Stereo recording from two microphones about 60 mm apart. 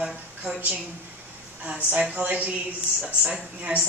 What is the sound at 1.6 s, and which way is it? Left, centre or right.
Speech, right.